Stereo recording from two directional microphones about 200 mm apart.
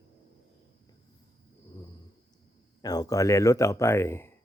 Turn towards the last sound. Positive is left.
turn(degrees=15)  # may be behind; listen again after turning